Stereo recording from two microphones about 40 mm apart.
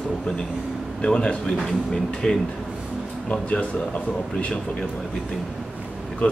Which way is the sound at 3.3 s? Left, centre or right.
Left.